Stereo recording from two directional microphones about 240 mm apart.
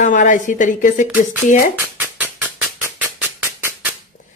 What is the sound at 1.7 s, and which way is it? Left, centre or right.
Dog, centre.